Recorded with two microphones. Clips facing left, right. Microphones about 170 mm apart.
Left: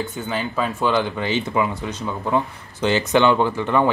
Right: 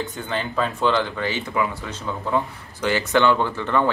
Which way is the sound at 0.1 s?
5° left (ahead or behind).